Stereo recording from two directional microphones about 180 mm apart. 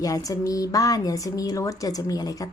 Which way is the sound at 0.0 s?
20° left (ahead or behind).